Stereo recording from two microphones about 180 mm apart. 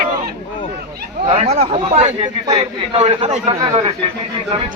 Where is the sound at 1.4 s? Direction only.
35° right (ahead or behind).